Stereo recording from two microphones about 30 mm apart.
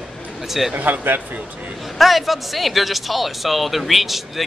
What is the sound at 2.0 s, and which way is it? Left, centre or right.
Speech, centre.